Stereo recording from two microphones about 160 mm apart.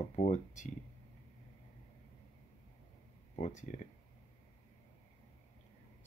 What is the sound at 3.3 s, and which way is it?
Speech, 45° left (ahead or behind).